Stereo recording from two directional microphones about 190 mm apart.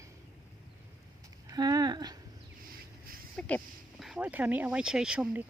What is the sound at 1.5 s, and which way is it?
Speech, 20° right (ahead or behind).